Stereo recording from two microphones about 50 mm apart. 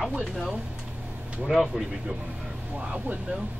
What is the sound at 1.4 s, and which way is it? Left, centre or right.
Speech, centre.